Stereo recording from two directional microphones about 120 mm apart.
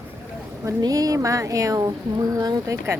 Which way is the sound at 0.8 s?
30° right (ahead or behind).